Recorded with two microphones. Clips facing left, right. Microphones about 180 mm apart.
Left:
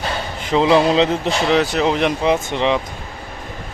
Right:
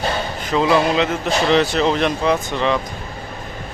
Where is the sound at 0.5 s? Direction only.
25° left (ahead or behind).